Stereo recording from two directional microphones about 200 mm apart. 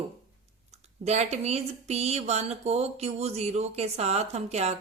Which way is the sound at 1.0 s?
35° right (ahead or behind).